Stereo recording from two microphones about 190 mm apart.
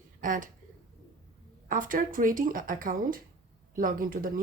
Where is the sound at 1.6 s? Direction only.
45° right (ahead or behind).